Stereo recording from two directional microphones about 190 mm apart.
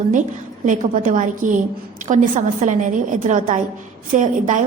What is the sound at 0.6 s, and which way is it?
A woman's voice, 45° right (ahead or behind).